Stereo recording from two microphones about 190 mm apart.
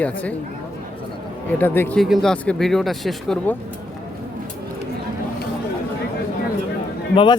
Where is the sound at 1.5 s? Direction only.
10° left (ahead or behind).